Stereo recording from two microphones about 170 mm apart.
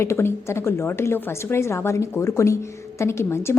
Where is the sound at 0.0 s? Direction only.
15° left (ahead or behind).